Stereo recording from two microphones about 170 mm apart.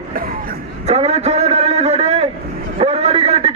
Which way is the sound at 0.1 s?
60° right (ahead or behind).